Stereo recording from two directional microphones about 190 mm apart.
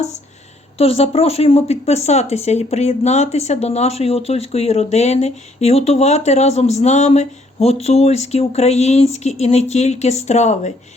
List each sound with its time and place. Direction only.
0.8 s speech: 30° left (ahead or behind)